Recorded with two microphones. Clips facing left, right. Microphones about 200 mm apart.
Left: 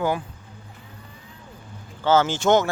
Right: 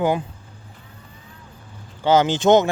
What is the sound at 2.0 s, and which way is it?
Speech, 15° right (ahead or behind).